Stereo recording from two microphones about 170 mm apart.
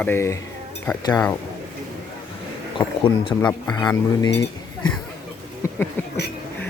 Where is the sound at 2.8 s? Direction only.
10° left (ahead or behind).